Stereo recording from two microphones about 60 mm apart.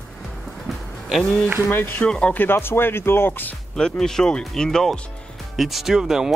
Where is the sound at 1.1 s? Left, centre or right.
Centre.